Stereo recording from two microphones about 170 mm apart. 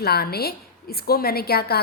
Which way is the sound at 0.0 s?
65° left (ahead or behind).